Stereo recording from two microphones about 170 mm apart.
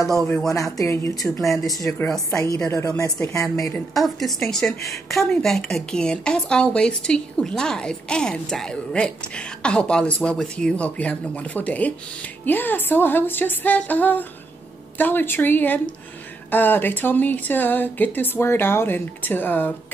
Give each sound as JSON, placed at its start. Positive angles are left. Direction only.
{"t": 0.7, "sound": "speech", "side_deg": 15}
{"t": 1.4, "sound": "a woman's voice", "side_deg": 0}
{"t": 1.9, "sound": "speech", "side_deg": 15}
{"t": 3.9, "sound": "a woman's voice", "side_deg": 0}